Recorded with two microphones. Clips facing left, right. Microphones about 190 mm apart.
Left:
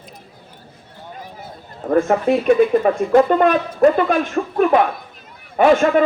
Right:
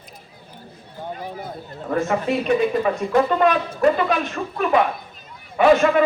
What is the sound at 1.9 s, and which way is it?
Speech, 50° left (ahead or behind).